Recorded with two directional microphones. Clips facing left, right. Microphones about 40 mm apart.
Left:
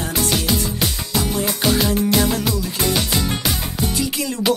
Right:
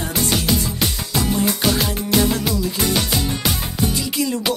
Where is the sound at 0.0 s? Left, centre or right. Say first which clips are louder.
Even; centre.